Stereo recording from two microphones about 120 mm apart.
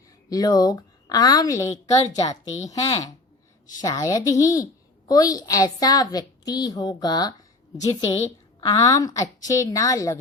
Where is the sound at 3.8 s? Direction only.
30° left (ahead or behind).